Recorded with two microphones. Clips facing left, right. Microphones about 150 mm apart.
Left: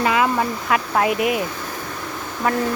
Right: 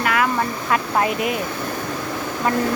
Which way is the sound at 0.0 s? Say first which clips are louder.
Left 2 dB; 20° left (ahead or behind).